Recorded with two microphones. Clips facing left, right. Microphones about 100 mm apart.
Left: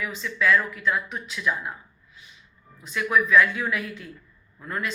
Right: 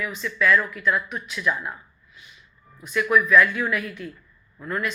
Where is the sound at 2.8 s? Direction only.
25° left (ahead or behind).